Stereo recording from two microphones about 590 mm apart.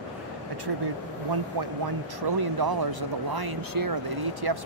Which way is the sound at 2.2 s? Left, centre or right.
Right.